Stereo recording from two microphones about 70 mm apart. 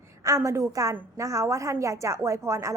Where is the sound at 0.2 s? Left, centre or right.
Right.